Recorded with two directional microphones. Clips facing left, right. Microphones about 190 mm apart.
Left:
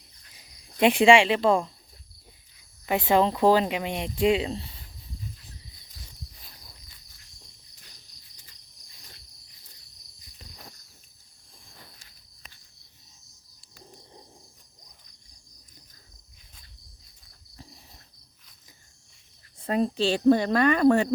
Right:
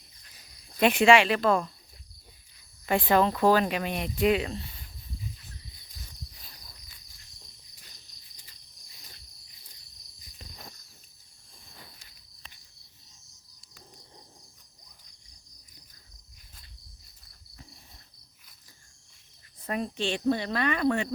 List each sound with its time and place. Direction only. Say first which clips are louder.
0.8 s speech: left 2 dB; 30° left (ahead or behind)
2.8 s speech: even; 10° left (ahead or behind)
3.1 s speech: left 2 dB; 25° left (ahead or behind)
19.5 s speech: left 7 dB; 30° left (ahead or behind)